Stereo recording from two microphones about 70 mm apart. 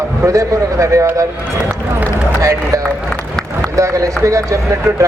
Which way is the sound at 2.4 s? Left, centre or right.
Right.